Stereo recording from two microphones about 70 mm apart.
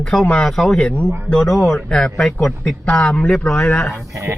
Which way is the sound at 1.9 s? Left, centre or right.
Centre.